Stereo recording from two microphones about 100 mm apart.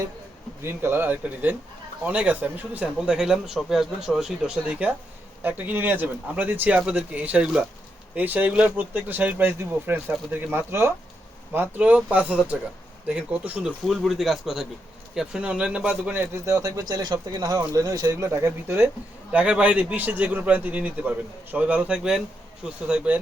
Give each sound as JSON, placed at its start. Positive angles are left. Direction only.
{"t": 0.6, "sound": "speech", "side_deg": -25}
{"t": 13.8, "sound": "speech", "side_deg": 0}
{"t": 19.3, "sound": "speech", "side_deg": -10}